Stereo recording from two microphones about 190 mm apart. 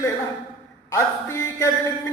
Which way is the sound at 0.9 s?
15° left (ahead or behind).